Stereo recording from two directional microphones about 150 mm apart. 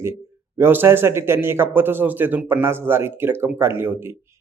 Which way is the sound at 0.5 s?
15° right (ahead or behind).